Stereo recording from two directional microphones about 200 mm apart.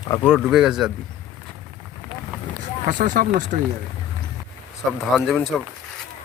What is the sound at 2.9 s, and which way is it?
Speech, 40° right (ahead or behind).